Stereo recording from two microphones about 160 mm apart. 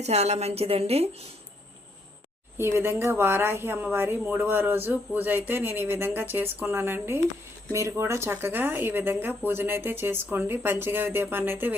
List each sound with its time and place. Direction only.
0.0 s a woman's voice: 40° right (ahead or behind)
2.6 s speech: 15° right (ahead or behind)